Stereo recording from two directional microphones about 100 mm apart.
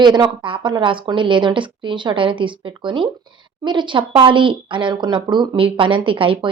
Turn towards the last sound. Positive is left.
turn(degrees=-60)  # may be behind; listen again after turning